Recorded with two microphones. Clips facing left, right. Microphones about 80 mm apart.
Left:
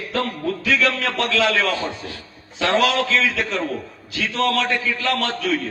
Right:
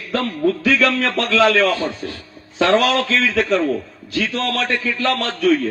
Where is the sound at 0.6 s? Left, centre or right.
Right.